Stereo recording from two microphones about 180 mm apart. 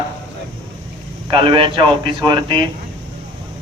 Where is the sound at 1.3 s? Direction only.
30° right (ahead or behind).